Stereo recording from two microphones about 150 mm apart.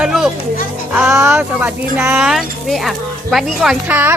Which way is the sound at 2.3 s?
Centre (ahead or behind).